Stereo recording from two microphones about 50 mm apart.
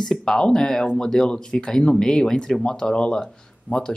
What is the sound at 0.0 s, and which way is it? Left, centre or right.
Speech, centre.